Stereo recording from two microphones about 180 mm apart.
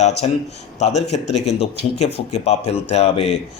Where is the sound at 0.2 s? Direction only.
35° left (ahead or behind).